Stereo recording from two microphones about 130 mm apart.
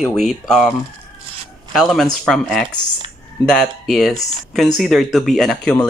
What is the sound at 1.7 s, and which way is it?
Speech, centre (ahead or behind).